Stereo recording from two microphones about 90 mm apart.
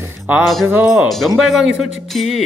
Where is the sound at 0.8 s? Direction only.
Centre (ahead or behind).